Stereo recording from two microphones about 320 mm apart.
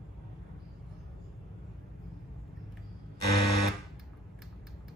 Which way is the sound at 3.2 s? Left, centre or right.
Left.